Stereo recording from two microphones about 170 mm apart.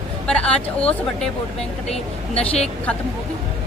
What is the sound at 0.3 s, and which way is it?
A woman's voice, 5° left (ahead or behind).